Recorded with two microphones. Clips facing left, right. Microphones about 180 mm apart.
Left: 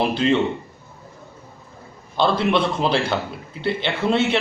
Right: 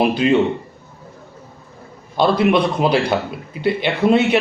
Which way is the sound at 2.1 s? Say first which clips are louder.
Right 4 dB; 15° right (ahead or behind).